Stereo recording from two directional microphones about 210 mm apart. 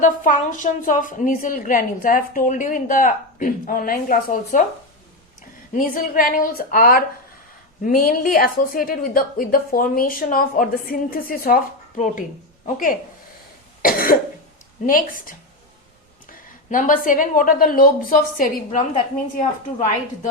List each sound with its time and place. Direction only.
0.0 s a woman's voice: 40° left (ahead or behind)
5.7 s a woman's voice: 40° left (ahead or behind)
16.6 s a woman's voice: 40° left (ahead or behind)